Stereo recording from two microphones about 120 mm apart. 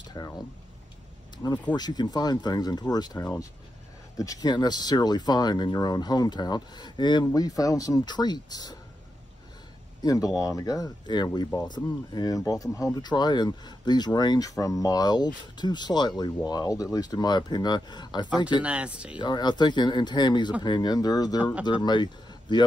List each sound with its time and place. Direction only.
0.2 s speech: 30° left (ahead or behind)
1.8 s speech: 35° left (ahead or behind)
10.0 s speech: 30° left (ahead or behind)
18.6 s speech: 10° right (ahead or behind)
19.1 s speech: 35° left (ahead or behind)